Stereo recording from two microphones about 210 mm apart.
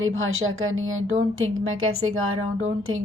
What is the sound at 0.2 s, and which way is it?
A woman's voice, 70° right (ahead or behind).